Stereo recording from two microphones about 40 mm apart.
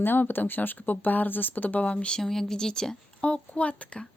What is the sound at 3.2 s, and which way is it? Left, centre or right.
Speech, left.